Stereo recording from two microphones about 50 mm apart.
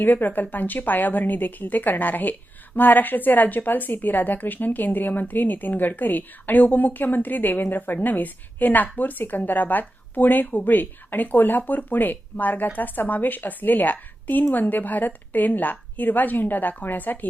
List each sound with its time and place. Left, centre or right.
0.0 s speech: left